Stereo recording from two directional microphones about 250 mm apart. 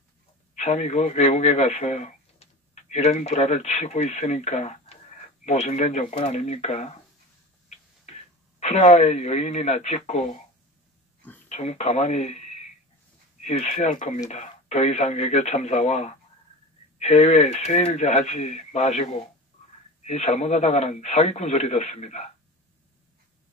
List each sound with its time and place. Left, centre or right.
0.6 s a man's voice: left
8.0 s speech: left
11.4 s a man's voice: left
20.1 s a man's voice: left